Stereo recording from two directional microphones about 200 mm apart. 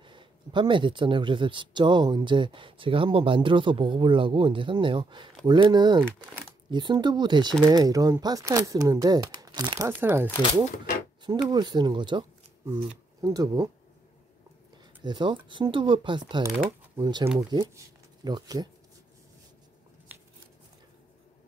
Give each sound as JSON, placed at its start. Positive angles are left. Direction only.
{"t": 0.0, "sound": "speech", "side_deg": -25}
{"t": 11.4, "sound": "speech", "side_deg": -20}
{"t": 15.0, "sound": "speech", "side_deg": -25}